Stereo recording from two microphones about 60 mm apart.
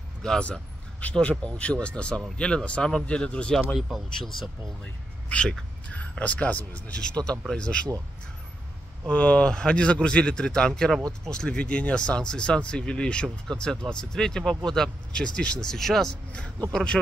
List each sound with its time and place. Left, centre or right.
0.2 s speech: centre
3.7 s speech: centre
5.3 s speech: centre
9.1 s a man's voice: left